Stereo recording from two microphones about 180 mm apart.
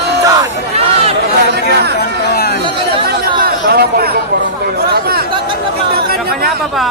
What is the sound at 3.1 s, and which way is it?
Chatter, 60° right (ahead or behind).